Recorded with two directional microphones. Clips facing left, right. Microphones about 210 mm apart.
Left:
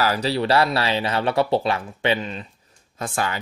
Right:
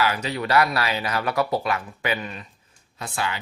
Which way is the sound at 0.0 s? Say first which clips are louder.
Left 3 dB; 35° left (ahead or behind).